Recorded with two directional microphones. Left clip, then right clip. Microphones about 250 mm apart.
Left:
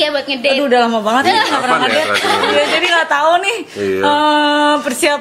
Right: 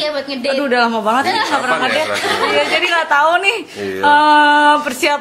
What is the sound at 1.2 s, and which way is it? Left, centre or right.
Speech, left.